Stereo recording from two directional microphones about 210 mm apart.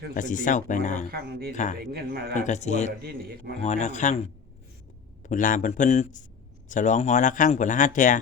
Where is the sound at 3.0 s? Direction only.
45° right (ahead or behind).